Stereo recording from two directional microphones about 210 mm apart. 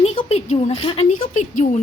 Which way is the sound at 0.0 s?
30° left (ahead or behind).